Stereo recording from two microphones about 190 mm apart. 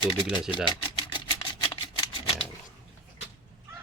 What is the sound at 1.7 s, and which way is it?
Scissors, 25° left (ahead or behind).